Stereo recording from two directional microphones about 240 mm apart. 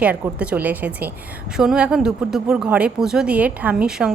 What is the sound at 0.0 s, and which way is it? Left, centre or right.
A woman's voice, centre.